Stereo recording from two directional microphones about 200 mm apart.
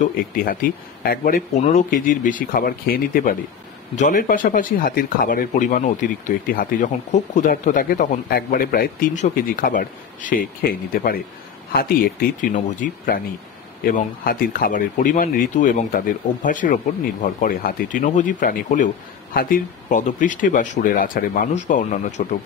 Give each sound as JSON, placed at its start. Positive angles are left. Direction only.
{"t": 0.0, "sound": "speech", "side_deg": 45}
{"t": 19.9, "sound": "speech", "side_deg": 40}